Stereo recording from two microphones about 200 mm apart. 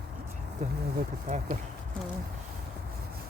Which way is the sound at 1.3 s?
35° right (ahead or behind).